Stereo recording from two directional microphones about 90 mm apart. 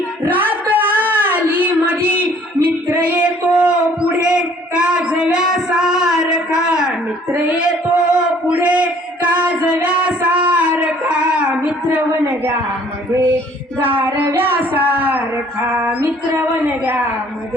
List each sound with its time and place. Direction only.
0.3 s child singing: 20° right (ahead or behind)
3.1 s music: 15° right (ahead or behind)
6.7 s a sound: 5° right (ahead or behind)
8.1 s a sound: 10° right (ahead or behind)
9.5 s music: 15° right (ahead or behind)
13.8 s child singing: 25° right (ahead or behind)
14.3 s a sound: 25° right (ahead or behind)
15.7 s music: 25° right (ahead or behind)
16.4 s speech: 20° right (ahead or behind)